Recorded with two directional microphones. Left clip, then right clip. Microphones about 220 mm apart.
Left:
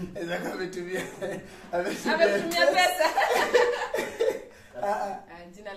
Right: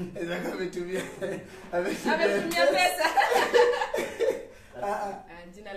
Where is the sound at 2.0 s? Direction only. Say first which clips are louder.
Left 3 dB; 5° right (ahead or behind).